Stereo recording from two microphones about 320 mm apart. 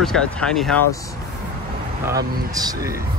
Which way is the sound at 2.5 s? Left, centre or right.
Centre.